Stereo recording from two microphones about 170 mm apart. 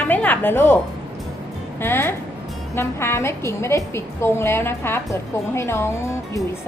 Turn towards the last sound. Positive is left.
turn(degrees=15)  # may be behind; listen again after turning